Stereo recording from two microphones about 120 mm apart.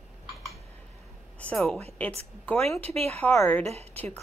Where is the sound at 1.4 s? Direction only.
5° left (ahead or behind).